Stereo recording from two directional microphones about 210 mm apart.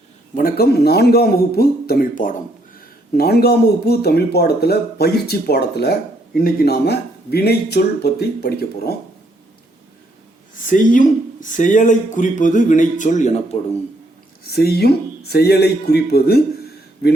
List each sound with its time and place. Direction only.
0.3 s speech: 45° left (ahead or behind)
10.5 s speech: 40° left (ahead or behind)
14.5 s speech: 50° left (ahead or behind)